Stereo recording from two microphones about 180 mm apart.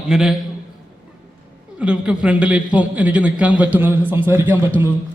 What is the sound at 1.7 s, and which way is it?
A man's voice, 5° right (ahead or behind).